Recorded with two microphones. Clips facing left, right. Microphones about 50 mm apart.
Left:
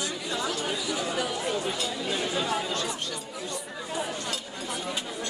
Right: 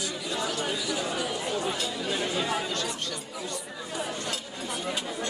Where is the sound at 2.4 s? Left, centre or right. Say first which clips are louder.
Even; centre.